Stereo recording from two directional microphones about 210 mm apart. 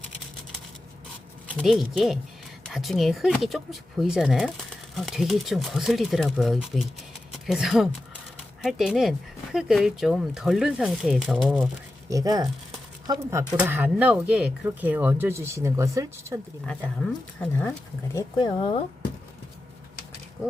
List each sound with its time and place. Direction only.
1.5 s speech: centre (ahead or behind)
12.0 s speech: 15° right (ahead or behind)
16.6 s speech: 5° left (ahead or behind)
18.1 s speech: 15° left (ahead or behind)